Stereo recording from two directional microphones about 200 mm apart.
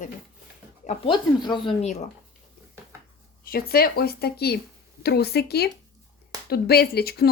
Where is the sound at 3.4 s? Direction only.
50° left (ahead or behind).